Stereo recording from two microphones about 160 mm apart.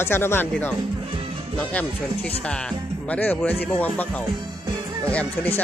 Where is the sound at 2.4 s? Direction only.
5° left (ahead or behind).